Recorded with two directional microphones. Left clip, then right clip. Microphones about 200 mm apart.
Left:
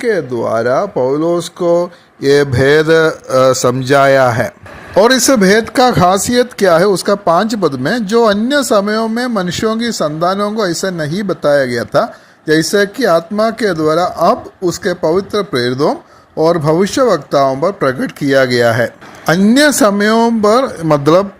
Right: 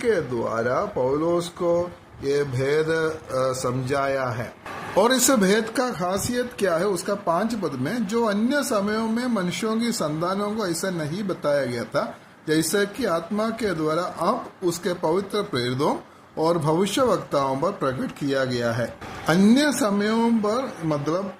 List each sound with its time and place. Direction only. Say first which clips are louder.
0.0 s speech: left 8 dB; 35° left (ahead or behind)
4.9 s speech: left 10 dB; 30° left (ahead or behind)